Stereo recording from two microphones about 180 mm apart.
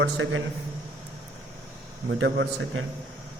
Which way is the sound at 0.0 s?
90° right.